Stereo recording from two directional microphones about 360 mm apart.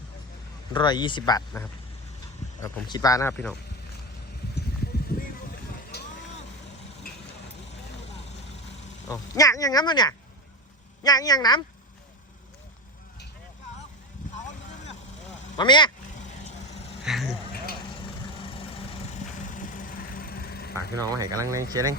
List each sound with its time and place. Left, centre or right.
0.7 s speech: centre
5.9 s vehicle: left
9.0 s speech: centre
15.5 s cat: centre
17.0 s a sound: centre
18.0 s vehicle: centre
21.0 s speech: centre